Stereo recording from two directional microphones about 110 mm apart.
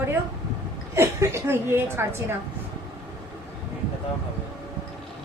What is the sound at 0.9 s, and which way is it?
A woman's voice, 25° right (ahead or behind).